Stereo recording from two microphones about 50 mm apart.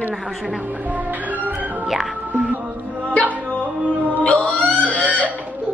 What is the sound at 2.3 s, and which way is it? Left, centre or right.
Music, right.